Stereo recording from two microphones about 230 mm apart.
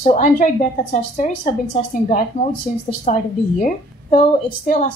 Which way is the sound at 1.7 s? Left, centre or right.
Left.